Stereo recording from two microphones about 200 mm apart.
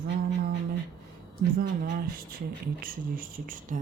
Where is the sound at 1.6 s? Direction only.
45° right (ahead or behind).